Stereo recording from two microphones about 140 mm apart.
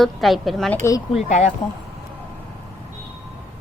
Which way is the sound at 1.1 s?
55° left (ahead or behind).